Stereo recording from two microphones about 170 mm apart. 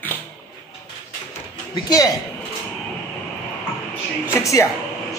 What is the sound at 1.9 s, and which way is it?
Speech, 20° left (ahead or behind).